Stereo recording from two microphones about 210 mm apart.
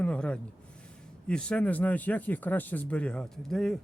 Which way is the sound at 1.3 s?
5° left (ahead or behind).